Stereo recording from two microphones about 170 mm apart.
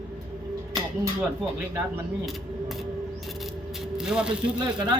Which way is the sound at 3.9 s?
5° right (ahead or behind).